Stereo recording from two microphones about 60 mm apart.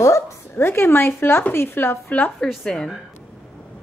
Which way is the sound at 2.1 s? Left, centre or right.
Left.